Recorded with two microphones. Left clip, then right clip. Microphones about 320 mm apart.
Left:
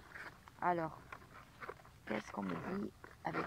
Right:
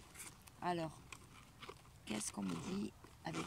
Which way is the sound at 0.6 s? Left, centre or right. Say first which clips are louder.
Left 5 dB; centre.